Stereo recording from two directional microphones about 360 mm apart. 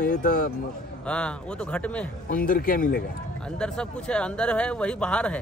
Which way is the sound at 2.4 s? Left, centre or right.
Left.